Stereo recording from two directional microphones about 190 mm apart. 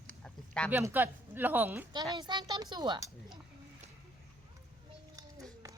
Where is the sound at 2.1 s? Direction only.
20° right (ahead or behind).